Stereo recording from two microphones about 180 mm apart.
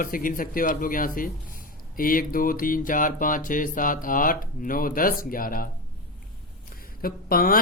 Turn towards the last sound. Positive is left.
turn(degrees=55)  # may be behind; listen again after turning